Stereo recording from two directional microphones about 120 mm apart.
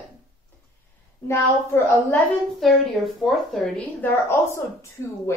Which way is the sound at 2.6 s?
Centre (ahead or behind).